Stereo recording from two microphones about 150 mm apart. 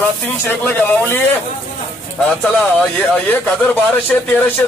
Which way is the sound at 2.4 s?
5° left (ahead or behind).